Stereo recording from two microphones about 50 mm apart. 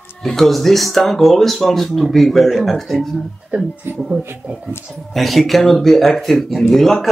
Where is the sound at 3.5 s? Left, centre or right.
Right.